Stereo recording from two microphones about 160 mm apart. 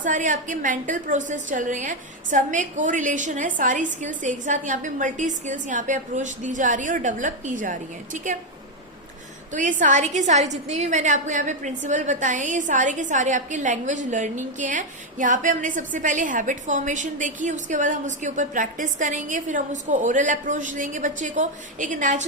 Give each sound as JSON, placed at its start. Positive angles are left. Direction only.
{"t": 0.0, "sound": "a woman's voice", "side_deg": -50}
{"t": 9.5, "sound": "a woman's voice", "side_deg": -55}